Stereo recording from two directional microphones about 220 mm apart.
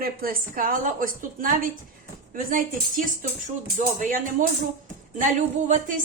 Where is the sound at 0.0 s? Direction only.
40° right (ahead or behind).